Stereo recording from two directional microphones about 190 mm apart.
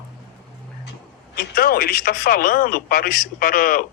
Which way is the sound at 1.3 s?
55° left (ahead or behind).